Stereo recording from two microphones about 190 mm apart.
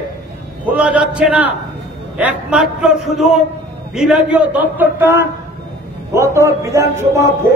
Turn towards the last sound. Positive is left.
turn(degrees=-15)  # may be behind; listen again after turning